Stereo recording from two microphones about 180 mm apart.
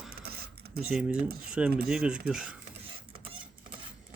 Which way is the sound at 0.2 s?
60° right (ahead or behind).